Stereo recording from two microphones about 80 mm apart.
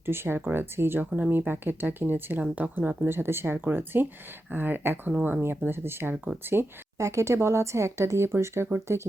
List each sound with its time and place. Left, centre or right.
0.0 s speech: right